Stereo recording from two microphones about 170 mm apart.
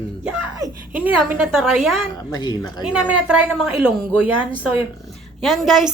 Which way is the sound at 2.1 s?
25° left (ahead or behind).